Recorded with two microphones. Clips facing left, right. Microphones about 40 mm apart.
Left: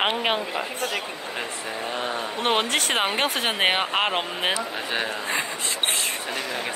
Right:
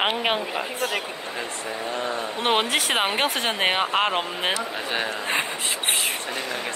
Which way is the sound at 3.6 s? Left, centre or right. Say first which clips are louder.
Right 1 dB; centre.